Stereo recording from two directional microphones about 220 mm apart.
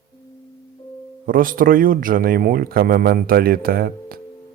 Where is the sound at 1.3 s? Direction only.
40° right (ahead or behind).